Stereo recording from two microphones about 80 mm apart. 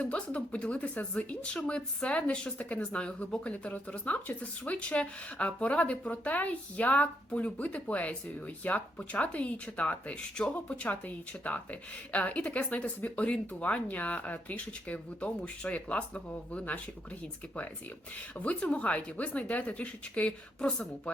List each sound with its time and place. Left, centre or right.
0.0 s speech: centre
18.3 s speech: centre